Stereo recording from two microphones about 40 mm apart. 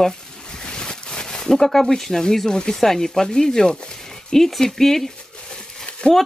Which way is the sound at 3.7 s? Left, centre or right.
Centre.